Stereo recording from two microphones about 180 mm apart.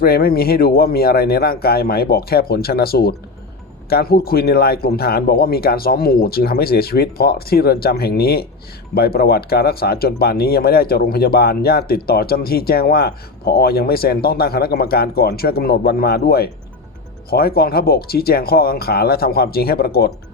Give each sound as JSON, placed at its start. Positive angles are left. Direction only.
{"t": 0.0, "sound": "speech", "side_deg": 55}